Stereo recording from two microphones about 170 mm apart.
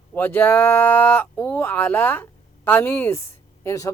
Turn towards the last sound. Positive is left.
turn(degrees=15)  # may be behind; listen again after turning